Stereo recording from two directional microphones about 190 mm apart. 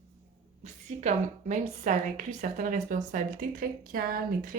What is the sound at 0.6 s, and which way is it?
Speech, 35° right (ahead or behind).